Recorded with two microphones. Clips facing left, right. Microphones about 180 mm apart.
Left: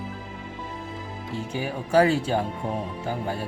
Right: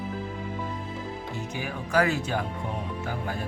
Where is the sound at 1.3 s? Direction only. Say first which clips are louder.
Left 8 dB; 30° left (ahead or behind).